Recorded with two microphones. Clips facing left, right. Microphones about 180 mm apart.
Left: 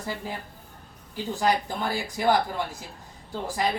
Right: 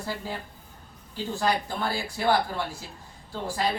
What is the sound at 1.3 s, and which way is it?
Speech, 15° left (ahead or behind).